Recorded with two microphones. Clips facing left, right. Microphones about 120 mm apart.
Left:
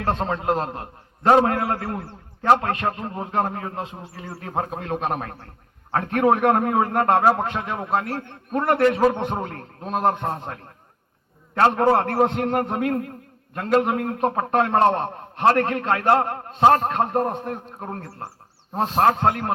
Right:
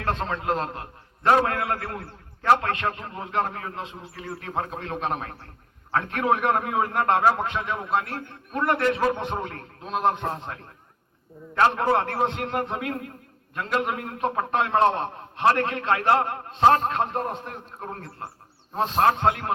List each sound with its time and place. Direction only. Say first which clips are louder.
0.0 s a man's voice: left 4 dB; 35° left (ahead or behind)